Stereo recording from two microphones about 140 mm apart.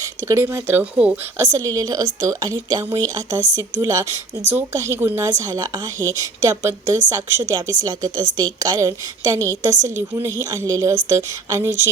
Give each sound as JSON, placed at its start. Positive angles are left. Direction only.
{"t": 0.0, "sound": "speech", "side_deg": -20}
{"t": 1.5, "sound": "a woman's voice", "side_deg": -25}